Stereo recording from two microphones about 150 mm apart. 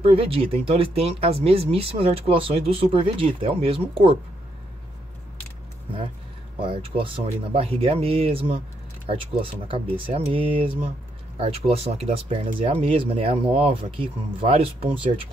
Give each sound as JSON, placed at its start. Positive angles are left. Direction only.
{"t": 0.0, "sound": "speech", "side_deg": -40}
{"t": 6.6, "sound": "speech", "side_deg": -35}
{"t": 9.7, "sound": "speech", "side_deg": -40}